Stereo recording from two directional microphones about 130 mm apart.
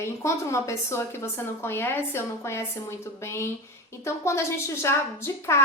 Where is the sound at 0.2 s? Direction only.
25° left (ahead or behind).